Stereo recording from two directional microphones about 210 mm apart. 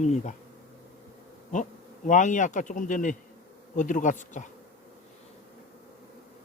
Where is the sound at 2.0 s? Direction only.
35° left (ahead or behind).